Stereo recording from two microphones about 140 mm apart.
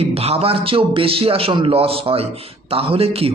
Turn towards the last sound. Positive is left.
turn(degrees=-45)  # may be behind; listen again after turning